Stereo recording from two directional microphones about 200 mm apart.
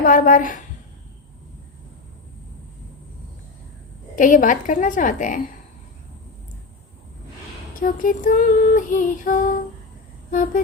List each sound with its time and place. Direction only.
0.0 s female singing: 40° left (ahead or behind)
4.1 s female singing: 40° left (ahead or behind)
7.8 s female singing: 40° left (ahead or behind)
10.3 s vehicle: 40° left (ahead or behind)